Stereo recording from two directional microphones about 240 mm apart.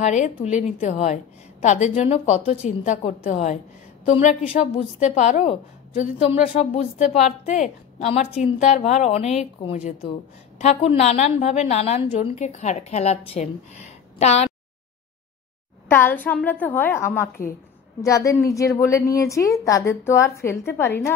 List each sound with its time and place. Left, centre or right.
0.0 s a woman's voice: left
15.9 s a woman's voice: centre